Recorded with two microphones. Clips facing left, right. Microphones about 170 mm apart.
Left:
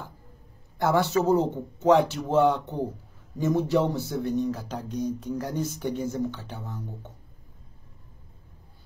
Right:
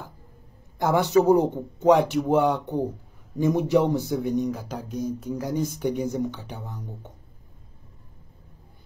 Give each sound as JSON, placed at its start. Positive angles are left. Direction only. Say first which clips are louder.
{"t": 0.7, "sound": "speech", "louder": "right 3 dB", "side_deg": -15}